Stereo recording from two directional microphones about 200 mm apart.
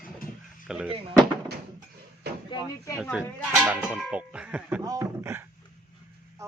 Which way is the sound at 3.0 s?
5° right (ahead or behind).